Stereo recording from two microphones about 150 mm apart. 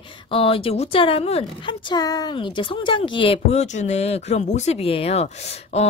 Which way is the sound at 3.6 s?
50° left (ahead or behind).